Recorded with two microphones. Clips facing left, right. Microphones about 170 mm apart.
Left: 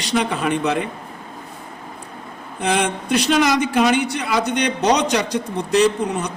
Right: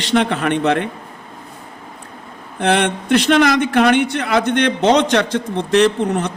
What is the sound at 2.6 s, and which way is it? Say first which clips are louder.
A man's voice: right 4 dB; 60° right (ahead or behind).